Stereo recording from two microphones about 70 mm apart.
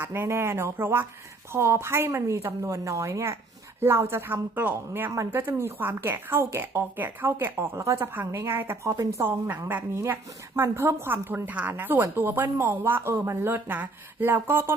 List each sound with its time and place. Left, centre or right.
0.0 s a woman's voice: right
3.8 s speech: right
5.3 s a woman's voice: right
8.5 s speech: right
8.8 s a woman's voice: right
9.2 s speech: right
10.0 s speech: right